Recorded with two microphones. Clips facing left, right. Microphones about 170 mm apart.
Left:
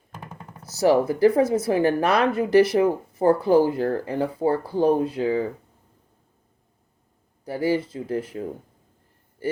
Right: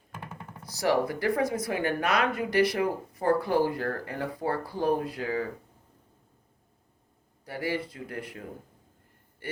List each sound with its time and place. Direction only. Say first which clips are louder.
0.7 s speech: left 7 dB; 25° left (ahead or behind)
7.4 s speech: left 8 dB; 25° left (ahead or behind)